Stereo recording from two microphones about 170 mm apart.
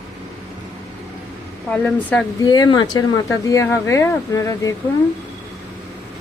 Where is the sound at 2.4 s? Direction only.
25° left (ahead or behind).